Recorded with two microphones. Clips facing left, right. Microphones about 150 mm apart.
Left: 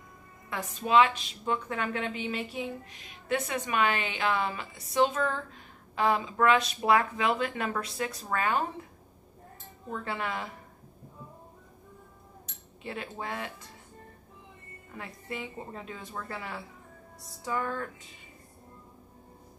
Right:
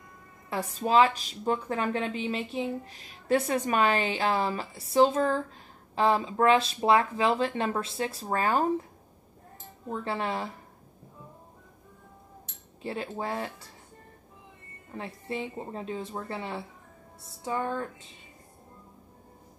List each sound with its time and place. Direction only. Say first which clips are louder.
0.5 s a woman's voice: right 2 dB; 35° right (ahead or behind)
9.8 s a woman's voice: right 3 dB; 30° right (ahead or behind)
12.8 s a woman's voice: right 4 dB; 30° right (ahead or behind)
15.0 s speech: right 4 dB; 30° right (ahead or behind)